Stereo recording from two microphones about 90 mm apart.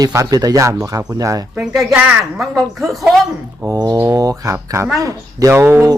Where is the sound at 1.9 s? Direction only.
10° right (ahead or behind).